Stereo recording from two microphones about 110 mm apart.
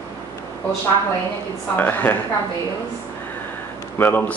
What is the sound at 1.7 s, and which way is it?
Speech, 15° left (ahead or behind).